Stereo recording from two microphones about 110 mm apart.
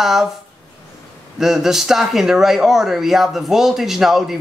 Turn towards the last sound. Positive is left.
turn(degrees=-5)  # may be behind; listen again after turning